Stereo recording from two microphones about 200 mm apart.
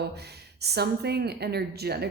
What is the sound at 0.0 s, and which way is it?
A woman's voice, 55° right (ahead or behind).